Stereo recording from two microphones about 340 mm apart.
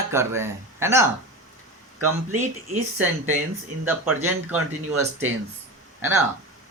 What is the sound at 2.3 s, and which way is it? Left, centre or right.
Speech, right.